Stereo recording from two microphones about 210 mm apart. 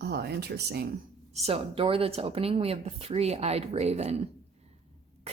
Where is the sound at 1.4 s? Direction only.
25° right (ahead or behind).